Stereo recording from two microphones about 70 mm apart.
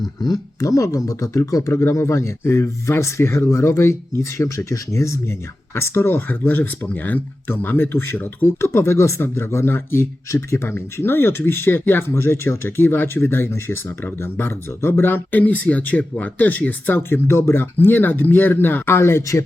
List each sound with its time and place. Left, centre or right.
0.2 s speech: left
1.7 s speech: left